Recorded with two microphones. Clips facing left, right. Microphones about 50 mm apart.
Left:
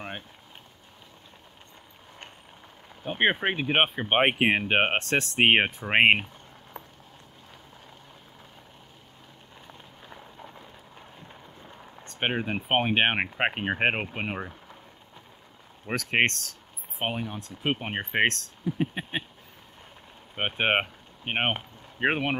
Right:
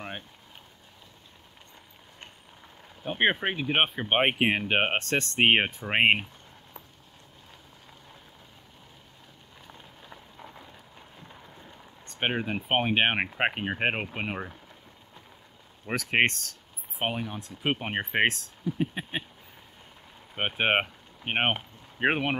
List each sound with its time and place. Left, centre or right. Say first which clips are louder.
3.0 s speech: left 1 dB; centre
3.5 s speech: left 2 dB; left
3.8 s speech: left 1 dB; centre
12.0 s a sound: left 1 dB; centre
12.5 s speech: left 2 dB; centre
13.7 s speech: left 3 dB; centre
15.9 s speech: even; centre
18.7 s speech: left 1 dB; centre
20.3 s speech: even; centre